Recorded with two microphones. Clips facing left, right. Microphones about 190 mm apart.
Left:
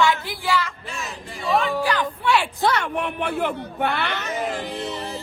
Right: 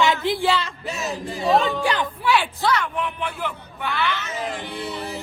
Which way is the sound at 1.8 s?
20° right (ahead or behind).